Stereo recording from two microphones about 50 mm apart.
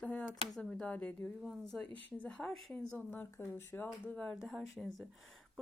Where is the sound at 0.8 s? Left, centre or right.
Left.